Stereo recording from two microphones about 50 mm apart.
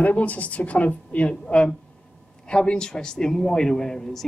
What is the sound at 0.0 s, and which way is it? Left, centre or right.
A man's voice, left.